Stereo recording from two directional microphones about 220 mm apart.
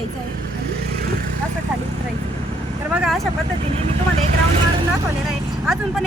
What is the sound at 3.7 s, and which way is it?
Speech, 30° right (ahead or behind).